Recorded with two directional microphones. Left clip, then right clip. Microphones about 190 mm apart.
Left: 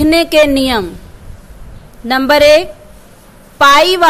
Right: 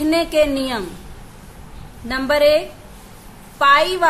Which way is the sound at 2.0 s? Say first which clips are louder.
Left 8 dB; 40° left (ahead or behind).